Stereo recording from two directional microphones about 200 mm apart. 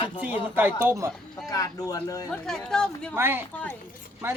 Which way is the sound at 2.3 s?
5° left (ahead or behind).